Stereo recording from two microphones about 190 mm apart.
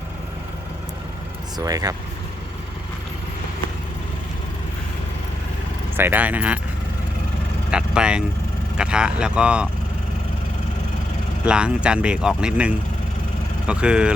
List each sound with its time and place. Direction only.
1.5 s speech: 20° right (ahead or behind)
6.0 s speech: 10° right (ahead or behind)
7.7 s vehicle: 5° right (ahead or behind)
8.8 s speech: 5° right (ahead or behind)
11.4 s speech: 5° right (ahead or behind)